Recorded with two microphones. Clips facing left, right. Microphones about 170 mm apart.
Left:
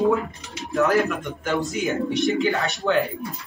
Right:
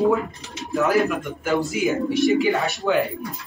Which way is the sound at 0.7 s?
Centre (ahead or behind).